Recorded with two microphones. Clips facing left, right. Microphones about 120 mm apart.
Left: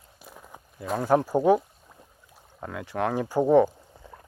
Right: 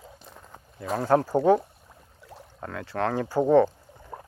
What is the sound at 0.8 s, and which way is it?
Speech, 5° left (ahead or behind).